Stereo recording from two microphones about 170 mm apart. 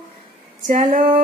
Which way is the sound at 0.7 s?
50° right (ahead or behind).